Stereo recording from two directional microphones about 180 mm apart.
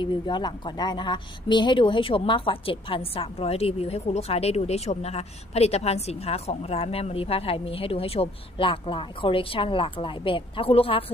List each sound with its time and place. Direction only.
0.0 s a woman's voice: 25° left (ahead or behind)